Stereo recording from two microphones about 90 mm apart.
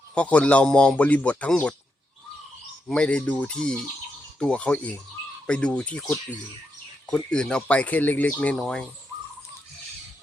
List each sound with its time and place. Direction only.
0.1 s a man's voice: 15° left (ahead or behind)
2.9 s a man's voice: 10° left (ahead or behind)